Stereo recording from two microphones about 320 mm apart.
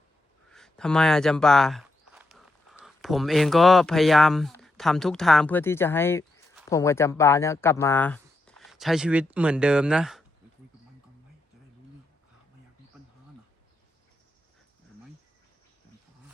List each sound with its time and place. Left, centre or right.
0.5 s speech: centre